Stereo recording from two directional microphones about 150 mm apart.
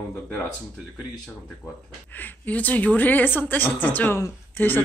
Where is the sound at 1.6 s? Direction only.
10° left (ahead or behind).